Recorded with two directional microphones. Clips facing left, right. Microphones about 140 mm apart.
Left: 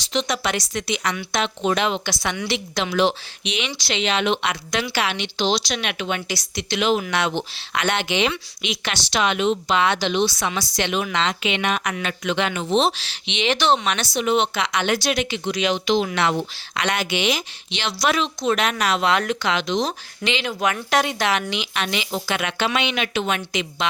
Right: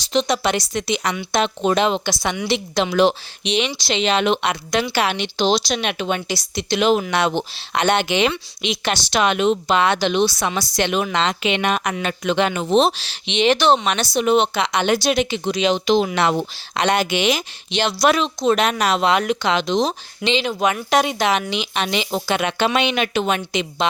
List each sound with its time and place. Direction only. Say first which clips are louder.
0.1 s speech: right 4 dB; 30° right (ahead or behind)
2.2 s speech: right 3 dB; 15° right (ahead or behind)
2.5 s speech: right 4 dB; 30° right (ahead or behind)
3.0 s speech: right 3 dB; 40° right (ahead or behind)
4.9 s speech: right 4 dB; 45° right (ahead or behind)
8.3 s speech: right 3 dB; 35° right (ahead or behind)
9.0 s speech: right 2 dB; 50° right (ahead or behind)
10.2 s speech: right 3 dB; 35° right (ahead or behind)
16.1 s speech: right 3 dB; 40° right (ahead or behind)
18.3 s speech: right 4 dB; 30° right (ahead or behind)
19.1 s speech: right 3 dB; 15° right (ahead or behind)
19.5 s speech: right 4 dB; 30° right (ahead or behind)